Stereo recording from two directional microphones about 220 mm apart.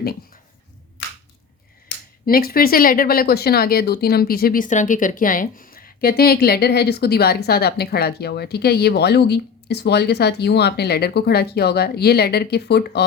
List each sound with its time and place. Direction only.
2.2 s speech: 40° left (ahead or behind)